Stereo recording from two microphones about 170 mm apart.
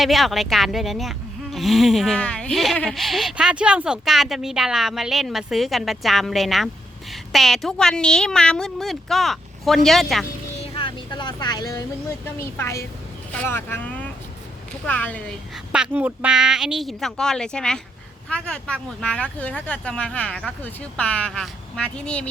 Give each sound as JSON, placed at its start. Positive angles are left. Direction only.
{"t": 0.0, "sound": "speech", "side_deg": 0}
{"t": 10.6, "sound": "speech", "side_deg": 30}
{"t": 15.7, "sound": "speech", "side_deg": -5}